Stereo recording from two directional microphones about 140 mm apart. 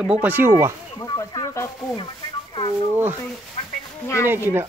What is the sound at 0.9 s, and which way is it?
Speech, 25° left (ahead or behind).